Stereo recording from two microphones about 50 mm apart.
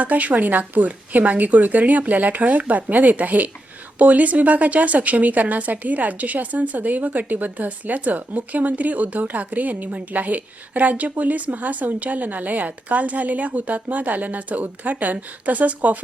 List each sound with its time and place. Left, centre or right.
0.0 s a woman's voice: right